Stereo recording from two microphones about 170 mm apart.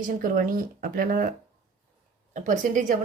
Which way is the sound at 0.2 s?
55° right (ahead or behind).